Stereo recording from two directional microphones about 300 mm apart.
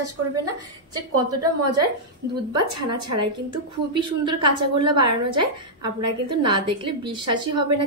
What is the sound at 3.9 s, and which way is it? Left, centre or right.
A woman's voice, centre.